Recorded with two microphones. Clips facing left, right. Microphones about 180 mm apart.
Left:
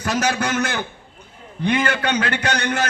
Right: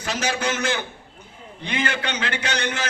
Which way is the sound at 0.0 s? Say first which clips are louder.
Left 4 dB; 60° left (ahead or behind).